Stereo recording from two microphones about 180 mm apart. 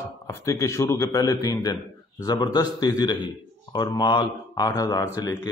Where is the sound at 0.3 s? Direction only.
15° left (ahead or behind).